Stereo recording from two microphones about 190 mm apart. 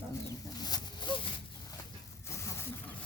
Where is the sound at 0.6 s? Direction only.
20° left (ahead or behind).